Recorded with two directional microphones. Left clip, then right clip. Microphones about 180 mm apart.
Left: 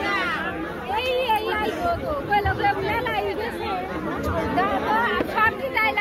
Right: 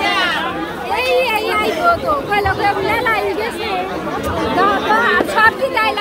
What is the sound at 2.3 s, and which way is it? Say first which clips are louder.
Speech: right 3 dB; 75° right (ahead or behind).